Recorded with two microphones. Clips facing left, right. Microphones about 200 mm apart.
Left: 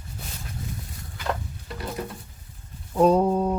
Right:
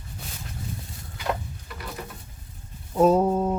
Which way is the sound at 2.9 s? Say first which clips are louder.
Even; 5° right (ahead or behind).